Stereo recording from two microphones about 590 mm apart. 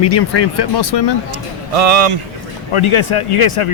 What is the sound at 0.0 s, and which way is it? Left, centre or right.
Speech, left.